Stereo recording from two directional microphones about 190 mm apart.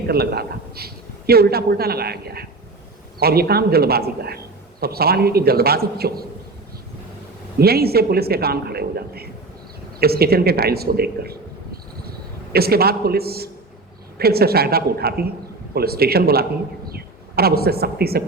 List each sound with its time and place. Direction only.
0.1 s a woman's voice: 55° right (ahead or behind)
7.6 s a woman's voice: 55° right (ahead or behind)
12.5 s a woman's voice: 55° right (ahead or behind)